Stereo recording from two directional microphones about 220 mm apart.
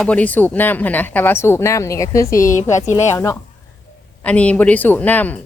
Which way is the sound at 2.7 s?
30° left (ahead or behind).